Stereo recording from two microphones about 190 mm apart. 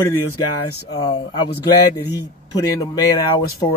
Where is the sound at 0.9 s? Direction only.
25° left (ahead or behind).